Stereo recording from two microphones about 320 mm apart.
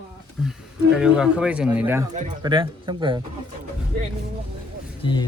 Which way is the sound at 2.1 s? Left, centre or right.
Centre.